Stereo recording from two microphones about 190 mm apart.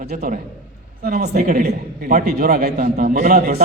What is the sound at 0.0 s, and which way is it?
A man's voice, 55° right (ahead or behind).